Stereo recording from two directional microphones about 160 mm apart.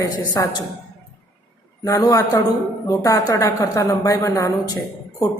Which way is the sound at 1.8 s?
20° left (ahead or behind).